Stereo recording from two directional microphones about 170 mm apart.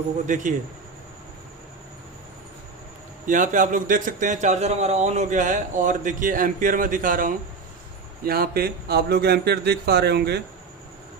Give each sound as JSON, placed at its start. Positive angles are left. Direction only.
{"t": 0.3, "sound": "a man's voice", "side_deg": -45}
{"t": 3.2, "sound": "a man's voice", "side_deg": -50}